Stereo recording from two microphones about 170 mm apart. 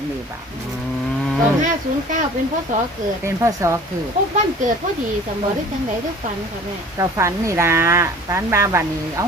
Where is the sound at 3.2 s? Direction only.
15° right (ahead or behind).